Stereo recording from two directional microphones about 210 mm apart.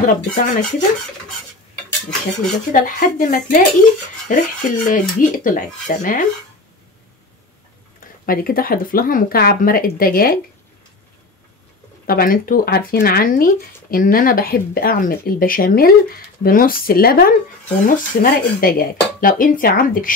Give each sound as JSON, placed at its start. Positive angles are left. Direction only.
{"t": 0.0, "sound": "dishes", "side_deg": 40}
{"t": 2.7, "sound": "dishes", "side_deg": 40}
{"t": 8.3, "sound": "speech", "side_deg": 45}
{"t": 12.1, "sound": "speech", "side_deg": 45}